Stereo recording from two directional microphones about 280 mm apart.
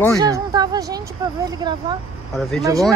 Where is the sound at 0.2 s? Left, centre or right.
Centre.